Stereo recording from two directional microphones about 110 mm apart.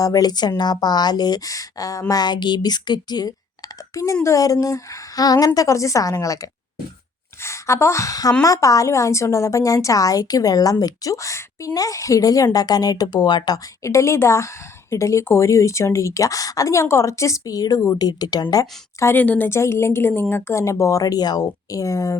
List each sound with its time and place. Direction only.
0.0 s a woman's voice: 35° left (ahead or behind)
3.9 s a woman's voice: 30° left (ahead or behind)
19.0 s a woman's voice: 15° left (ahead or behind); by 22.2 s 30° left (ahead or behind)